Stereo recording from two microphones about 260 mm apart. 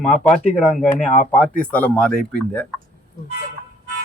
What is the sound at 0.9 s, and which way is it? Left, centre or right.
Speech, left.